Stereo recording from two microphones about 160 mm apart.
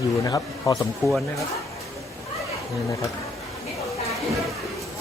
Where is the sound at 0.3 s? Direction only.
25° left (ahead or behind).